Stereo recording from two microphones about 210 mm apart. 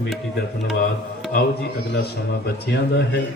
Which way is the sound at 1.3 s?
50° left (ahead or behind).